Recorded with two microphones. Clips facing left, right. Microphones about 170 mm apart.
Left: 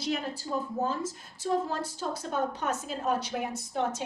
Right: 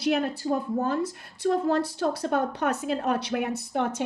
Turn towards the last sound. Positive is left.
turn(degrees=-60)  # may be behind; listen again after turning